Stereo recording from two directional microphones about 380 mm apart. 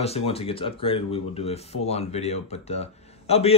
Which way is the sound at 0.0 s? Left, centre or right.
Centre.